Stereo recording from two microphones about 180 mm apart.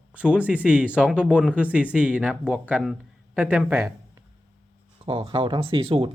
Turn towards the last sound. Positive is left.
turn(degrees=-30)  # may be behind; listen again after turning